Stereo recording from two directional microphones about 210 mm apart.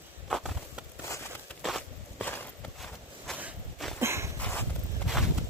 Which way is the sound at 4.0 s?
10° right (ahead or behind).